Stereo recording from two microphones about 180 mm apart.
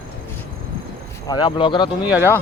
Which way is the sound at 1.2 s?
25° left (ahead or behind).